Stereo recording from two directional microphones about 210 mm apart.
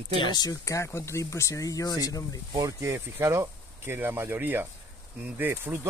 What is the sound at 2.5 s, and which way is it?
Speech, 15° right (ahead or behind).